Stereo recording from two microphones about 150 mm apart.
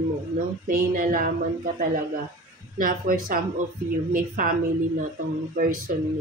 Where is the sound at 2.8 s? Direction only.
70° right (ahead or behind).